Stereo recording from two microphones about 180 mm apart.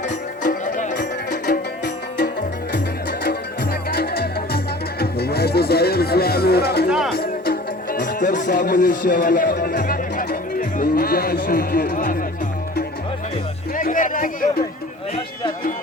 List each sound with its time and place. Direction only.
0.1 s music: 45° left (ahead or behind)
13.7 s chatter: 50° left (ahead or behind)